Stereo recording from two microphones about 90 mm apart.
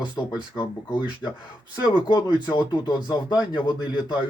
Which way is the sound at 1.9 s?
55° left (ahead or behind).